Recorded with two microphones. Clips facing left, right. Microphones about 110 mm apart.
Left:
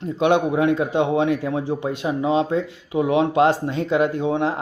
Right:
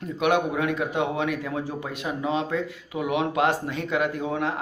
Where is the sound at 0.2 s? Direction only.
30° left (ahead or behind).